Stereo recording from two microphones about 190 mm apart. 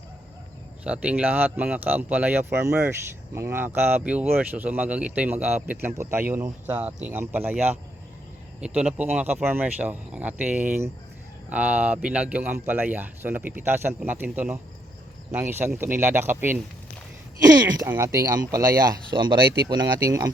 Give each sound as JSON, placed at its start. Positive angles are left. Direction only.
{"t": 0.9, "sound": "speech", "side_deg": -5}